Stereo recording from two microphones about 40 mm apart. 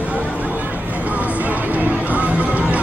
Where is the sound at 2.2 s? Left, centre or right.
Right.